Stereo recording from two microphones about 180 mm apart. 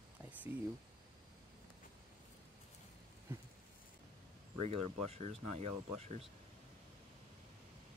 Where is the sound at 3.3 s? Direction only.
15° right (ahead or behind).